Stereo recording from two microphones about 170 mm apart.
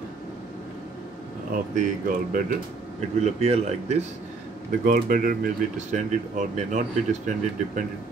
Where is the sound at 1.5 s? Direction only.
55° right (ahead or behind).